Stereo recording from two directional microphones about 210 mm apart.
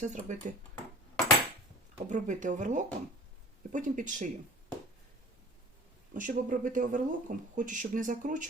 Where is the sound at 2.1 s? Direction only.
35° right (ahead or behind).